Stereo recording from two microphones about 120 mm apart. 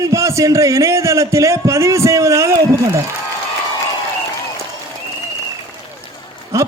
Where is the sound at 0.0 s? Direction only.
25° right (ahead or behind).